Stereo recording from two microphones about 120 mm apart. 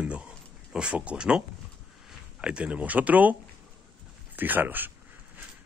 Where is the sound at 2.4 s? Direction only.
10° right (ahead or behind).